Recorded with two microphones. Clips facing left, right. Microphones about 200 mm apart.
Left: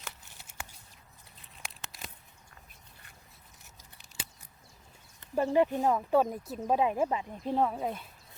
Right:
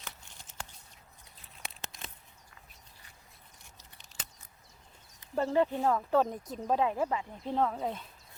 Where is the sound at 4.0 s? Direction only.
10° left (ahead or behind).